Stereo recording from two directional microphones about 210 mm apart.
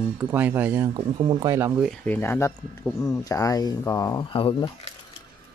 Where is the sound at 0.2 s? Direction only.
10° right (ahead or behind).